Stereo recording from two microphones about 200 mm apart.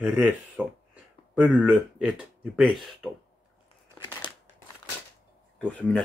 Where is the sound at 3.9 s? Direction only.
20° left (ahead or behind).